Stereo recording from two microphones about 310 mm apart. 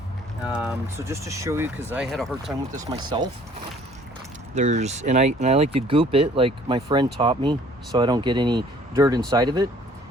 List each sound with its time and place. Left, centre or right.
0.4 s speech: centre
4.5 s speech: right